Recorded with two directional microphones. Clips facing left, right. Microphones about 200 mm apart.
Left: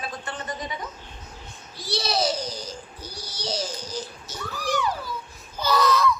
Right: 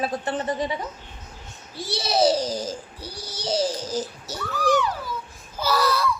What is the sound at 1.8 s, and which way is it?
A child's voice, 30° right (ahead or behind).